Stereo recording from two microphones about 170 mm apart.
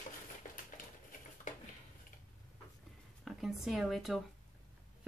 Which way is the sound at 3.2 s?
Centre (ahead or behind).